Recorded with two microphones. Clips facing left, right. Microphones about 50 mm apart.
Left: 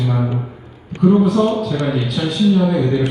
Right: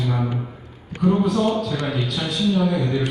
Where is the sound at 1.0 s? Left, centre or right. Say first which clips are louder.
Left 5 dB; centre.